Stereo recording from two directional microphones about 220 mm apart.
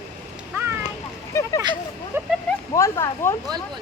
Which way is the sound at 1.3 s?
10° left (ahead or behind).